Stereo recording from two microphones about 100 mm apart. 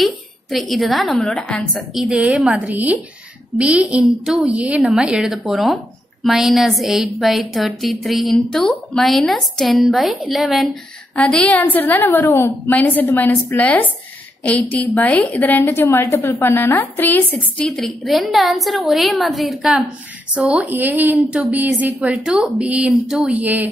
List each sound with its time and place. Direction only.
0.0 s a woman's voice: centre (ahead or behind)
2.0 s a woman's voice: 5° right (ahead or behind)
11.1 s a woman's voice: 10° left (ahead or behind)
17.6 s a woman's voice: 5° left (ahead or behind)
20.3 s a woman's voice: 15° right (ahead or behind)